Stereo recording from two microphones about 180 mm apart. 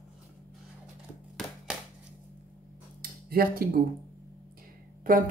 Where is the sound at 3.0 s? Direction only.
55° right (ahead or behind).